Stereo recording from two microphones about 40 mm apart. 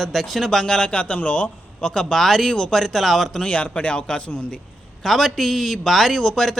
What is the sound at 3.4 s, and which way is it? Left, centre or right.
Speech, left.